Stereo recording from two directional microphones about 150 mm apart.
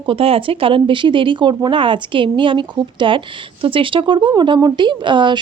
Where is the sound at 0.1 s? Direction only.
40° right (ahead or behind).